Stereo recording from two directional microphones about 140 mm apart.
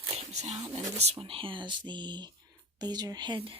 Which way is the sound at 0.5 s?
30° right (ahead or behind).